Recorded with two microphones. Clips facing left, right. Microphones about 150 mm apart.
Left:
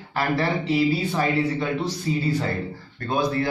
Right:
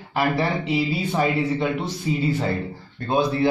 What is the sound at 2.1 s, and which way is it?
Speech, 15° right (ahead or behind).